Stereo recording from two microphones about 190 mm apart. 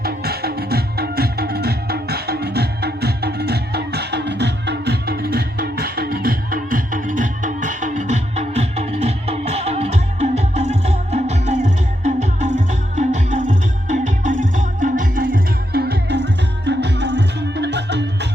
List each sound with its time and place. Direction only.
0.0 s music: 55° right (ahead or behind)